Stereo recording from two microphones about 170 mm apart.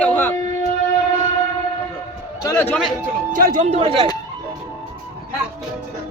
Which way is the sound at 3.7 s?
35° right (ahead or behind).